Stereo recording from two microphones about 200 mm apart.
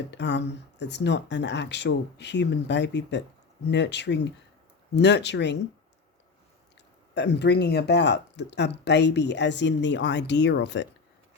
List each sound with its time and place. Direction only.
0.1 s speech: 60° left (ahead or behind)
7.1 s speech: 60° left (ahead or behind)